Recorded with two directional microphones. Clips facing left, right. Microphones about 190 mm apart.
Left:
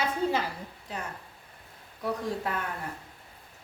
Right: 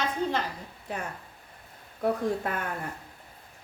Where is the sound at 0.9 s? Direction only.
55° right (ahead or behind).